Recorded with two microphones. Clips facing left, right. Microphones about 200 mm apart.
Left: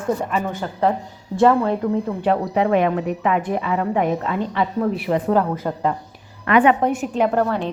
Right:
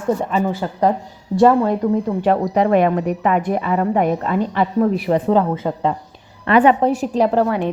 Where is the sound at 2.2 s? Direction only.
45° right (ahead or behind).